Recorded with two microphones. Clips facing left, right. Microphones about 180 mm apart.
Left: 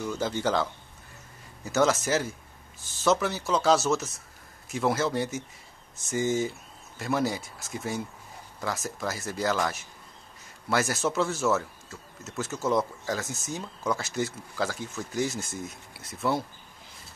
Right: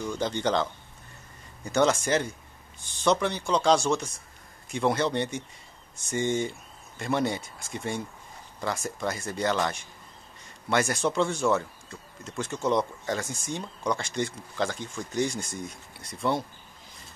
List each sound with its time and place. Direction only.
0.0 s speech: 5° left (ahead or behind)